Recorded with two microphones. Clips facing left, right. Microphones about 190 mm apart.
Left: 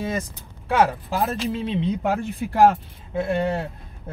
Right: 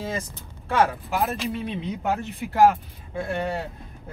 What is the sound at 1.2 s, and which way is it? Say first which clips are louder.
Speech: left 3 dB; 25° left (ahead or behind).